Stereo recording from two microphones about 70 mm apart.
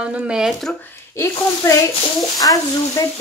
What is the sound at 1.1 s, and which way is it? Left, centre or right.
Speech, left.